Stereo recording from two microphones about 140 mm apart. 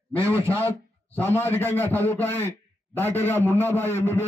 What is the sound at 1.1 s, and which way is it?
A man's voice, 15° left (ahead or behind).